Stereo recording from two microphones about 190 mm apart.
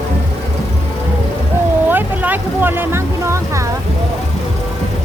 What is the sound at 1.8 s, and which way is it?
Vehicle, 10° right (ahead or behind).